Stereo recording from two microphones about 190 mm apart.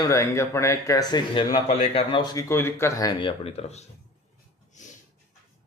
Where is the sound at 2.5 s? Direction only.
10° left (ahead or behind); by 3.9 s 35° left (ahead or behind).